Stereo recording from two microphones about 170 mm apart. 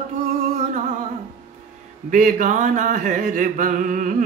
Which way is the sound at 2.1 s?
50° right (ahead or behind).